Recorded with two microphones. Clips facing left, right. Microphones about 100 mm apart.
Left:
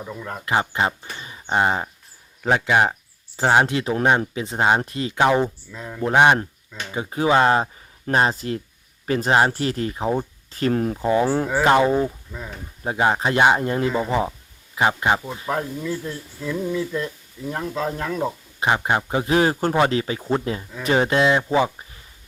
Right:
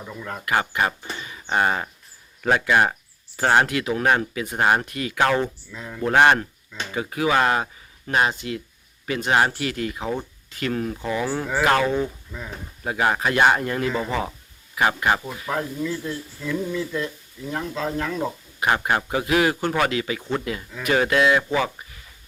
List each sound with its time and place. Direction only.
0.0 s speech: 15° left (ahead or behind)
0.4 s speech: 25° left (ahead or behind)
1.2 s a sound: 25° left (ahead or behind)
2.4 s speech: 20° left (ahead or behind)
5.2 s speech: 15° left (ahead or behind)
5.7 s speech: 5° left (ahead or behind)
6.9 s speech: 25° left (ahead or behind)
11.4 s speech: 20° left (ahead or behind)
18.6 s speech: 20° left (ahead or behind)